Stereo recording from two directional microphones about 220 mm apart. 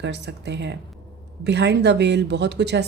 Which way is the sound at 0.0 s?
50° right (ahead or behind).